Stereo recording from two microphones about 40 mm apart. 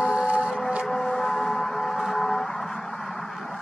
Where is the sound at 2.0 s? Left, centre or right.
Centre.